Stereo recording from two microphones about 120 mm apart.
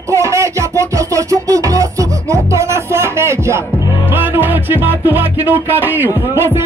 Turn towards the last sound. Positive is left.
turn(degrees=-20)  # may be behind; listen again after turning